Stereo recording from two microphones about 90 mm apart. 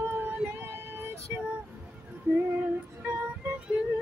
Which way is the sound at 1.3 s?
25° right (ahead or behind).